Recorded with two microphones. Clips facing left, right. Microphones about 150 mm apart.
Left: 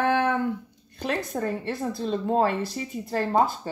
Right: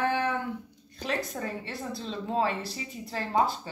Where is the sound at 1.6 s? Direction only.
50° left (ahead or behind).